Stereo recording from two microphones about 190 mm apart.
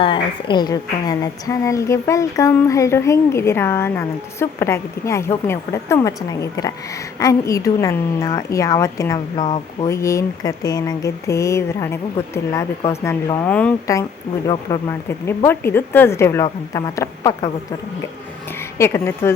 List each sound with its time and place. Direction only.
0.0 s a woman's voice: 25° left (ahead or behind)
18.8 s a woman's voice: 15° left (ahead or behind)